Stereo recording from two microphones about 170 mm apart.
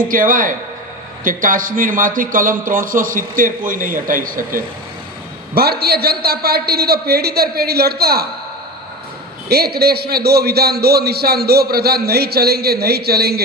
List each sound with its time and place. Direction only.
0.1 s a man's voice: 55° right (ahead or behind)
5.5 s a man's voice: 65° right (ahead or behind)
9.5 s a man's voice: 65° right (ahead or behind)